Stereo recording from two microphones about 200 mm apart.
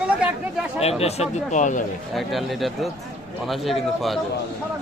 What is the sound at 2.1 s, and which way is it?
A man's voice, centre (ahead or behind).